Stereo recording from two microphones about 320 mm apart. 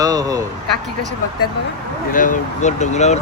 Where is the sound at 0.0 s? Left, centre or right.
Centre.